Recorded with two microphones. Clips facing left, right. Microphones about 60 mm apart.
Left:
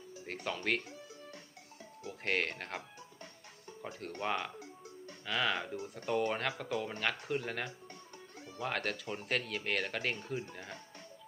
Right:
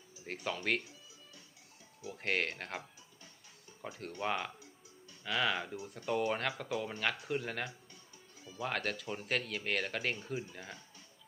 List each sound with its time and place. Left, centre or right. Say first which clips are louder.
0.4 s speech: even; centre
2.0 s speech: even; centre
3.8 s speech: even; centre
8.4 s music: even; left
8.6 s speech: even; centre